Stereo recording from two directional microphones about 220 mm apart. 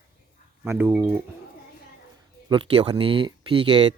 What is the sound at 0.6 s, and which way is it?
Speech, 10° right (ahead or behind).